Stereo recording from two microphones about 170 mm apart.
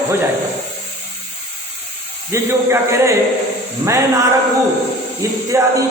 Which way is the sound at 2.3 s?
15° right (ahead or behind).